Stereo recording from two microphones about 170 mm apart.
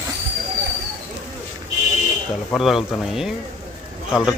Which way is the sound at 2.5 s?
Centre (ahead or behind).